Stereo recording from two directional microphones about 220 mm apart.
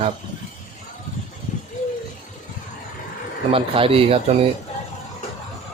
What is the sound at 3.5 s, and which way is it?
Speech, 25° right (ahead or behind).